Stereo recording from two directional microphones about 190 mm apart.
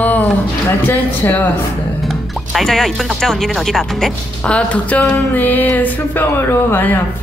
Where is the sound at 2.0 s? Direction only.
Centre (ahead or behind).